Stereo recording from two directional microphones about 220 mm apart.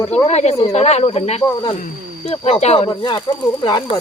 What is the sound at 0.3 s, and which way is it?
Speech, 30° left (ahead or behind).